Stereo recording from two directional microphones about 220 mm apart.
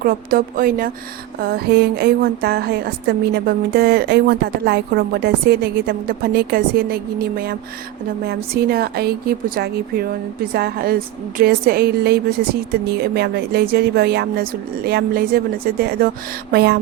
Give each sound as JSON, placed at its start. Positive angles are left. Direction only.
{"t": 0.0, "sound": "a woman's voice", "side_deg": -40}